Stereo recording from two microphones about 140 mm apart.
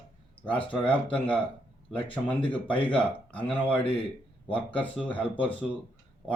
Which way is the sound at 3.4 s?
10° left (ahead or behind).